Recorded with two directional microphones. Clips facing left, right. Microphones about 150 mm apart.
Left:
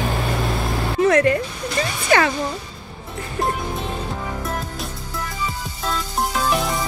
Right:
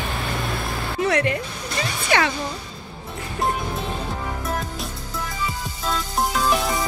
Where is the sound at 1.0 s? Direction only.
45° left (ahead or behind).